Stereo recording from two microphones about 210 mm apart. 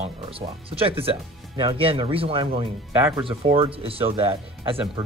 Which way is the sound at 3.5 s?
25° right (ahead or behind).